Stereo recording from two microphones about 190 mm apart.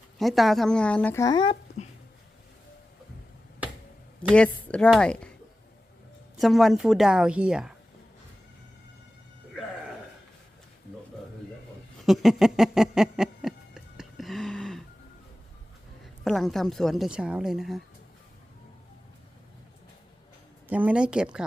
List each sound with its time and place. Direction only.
0.2 s a woman's voice: centre (ahead or behind); by 1.5 s 25° left (ahead or behind)
4.2 s a woman's voice: 5° left (ahead or behind)
6.4 s a woman's voice: centre (ahead or behind)
12.0 s a sound: centre (ahead or behind)
16.2 s a woman's voice: centre (ahead or behind)
20.7 s a woman's voice: 5° right (ahead or behind)